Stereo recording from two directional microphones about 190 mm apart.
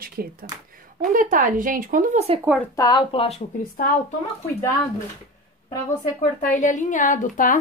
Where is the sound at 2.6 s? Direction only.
20° left (ahead or behind).